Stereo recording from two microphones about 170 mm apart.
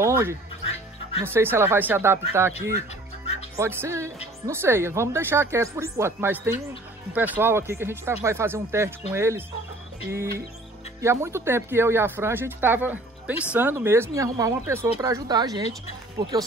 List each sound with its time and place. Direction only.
0.0 s speech: 15° right (ahead or behind)
3.5 s speech: 15° right (ahead or behind)